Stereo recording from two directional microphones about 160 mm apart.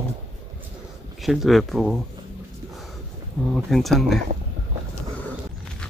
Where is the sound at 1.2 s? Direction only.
Centre (ahead or behind).